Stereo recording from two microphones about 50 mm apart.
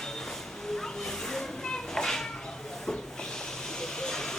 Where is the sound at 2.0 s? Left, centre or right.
Centre.